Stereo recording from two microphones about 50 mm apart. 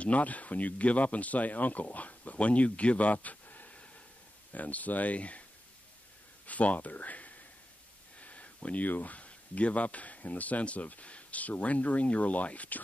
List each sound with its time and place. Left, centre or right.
0.0 s speech: left
6.4 s speech: left